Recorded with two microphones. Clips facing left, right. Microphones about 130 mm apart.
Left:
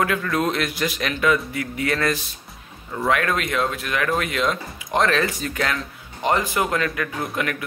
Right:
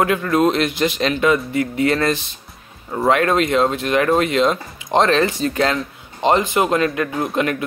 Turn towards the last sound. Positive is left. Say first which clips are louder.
# right 6 dB
turn(degrees=-25)  # may be behind; listen again after turning